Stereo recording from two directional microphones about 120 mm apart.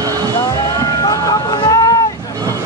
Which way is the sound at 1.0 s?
35° left (ahead or behind).